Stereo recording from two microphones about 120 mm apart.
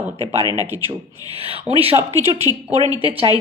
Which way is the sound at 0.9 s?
50° right (ahead or behind).